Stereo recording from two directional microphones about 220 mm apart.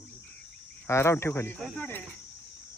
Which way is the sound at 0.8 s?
10° left (ahead or behind).